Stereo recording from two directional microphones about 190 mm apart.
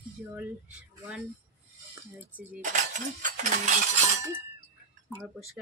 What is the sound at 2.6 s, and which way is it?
Cutlery, 40° right (ahead or behind).